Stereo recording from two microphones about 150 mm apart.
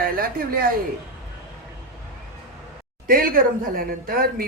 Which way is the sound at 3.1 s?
70° right (ahead or behind).